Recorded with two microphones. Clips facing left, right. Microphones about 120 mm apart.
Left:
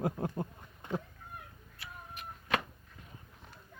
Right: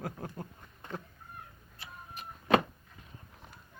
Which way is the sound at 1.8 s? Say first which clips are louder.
Even; 30° right (ahead or behind).